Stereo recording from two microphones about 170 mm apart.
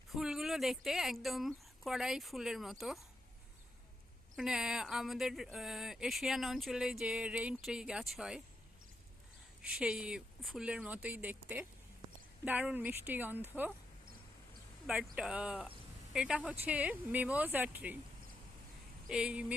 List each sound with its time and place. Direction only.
0.1 s speech: centre (ahead or behind)
4.4 s speech: 5° right (ahead or behind)
9.6 s speech: 5° right (ahead or behind)
14.8 s speech: 5° right (ahead or behind)
19.0 s speech: 5° right (ahead or behind)